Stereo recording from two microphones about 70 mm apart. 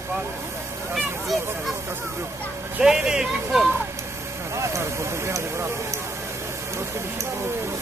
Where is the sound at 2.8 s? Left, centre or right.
Centre.